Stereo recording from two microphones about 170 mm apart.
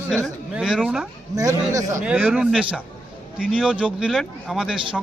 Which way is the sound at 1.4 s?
20° right (ahead or behind).